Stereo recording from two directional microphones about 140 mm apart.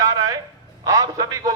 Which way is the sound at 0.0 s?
25° right (ahead or behind).